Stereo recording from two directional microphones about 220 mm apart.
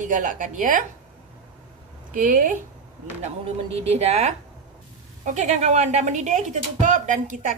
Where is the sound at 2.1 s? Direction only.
35° right (ahead or behind).